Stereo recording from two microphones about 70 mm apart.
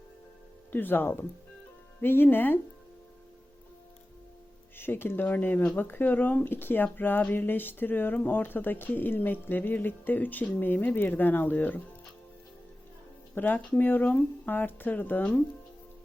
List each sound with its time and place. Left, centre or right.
0.7 s speech: left
4.8 s speech: left
13.3 s speech: left